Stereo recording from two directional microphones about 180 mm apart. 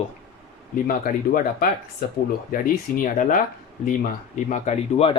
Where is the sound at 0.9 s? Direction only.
50° left (ahead or behind).